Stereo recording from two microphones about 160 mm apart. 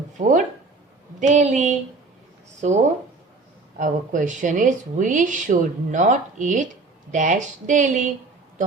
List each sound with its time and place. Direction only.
0.2 s speech: 55° right (ahead or behind)